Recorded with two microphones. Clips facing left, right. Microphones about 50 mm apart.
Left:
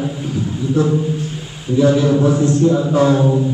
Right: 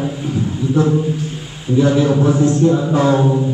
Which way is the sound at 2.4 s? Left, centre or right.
Right.